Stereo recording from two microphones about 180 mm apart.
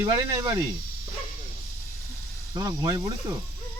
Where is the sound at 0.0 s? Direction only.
20° right (ahead or behind).